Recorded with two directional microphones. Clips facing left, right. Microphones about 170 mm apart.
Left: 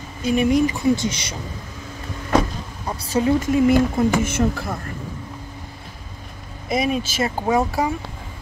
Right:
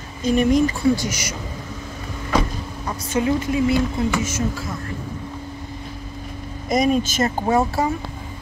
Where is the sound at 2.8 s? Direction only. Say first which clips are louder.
Left 1 dB; 35° left (ahead or behind); by 4.8 s 60° left (ahead or behind).